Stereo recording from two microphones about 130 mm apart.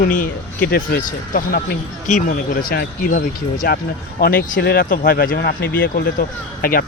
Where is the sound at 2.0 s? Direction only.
80° left.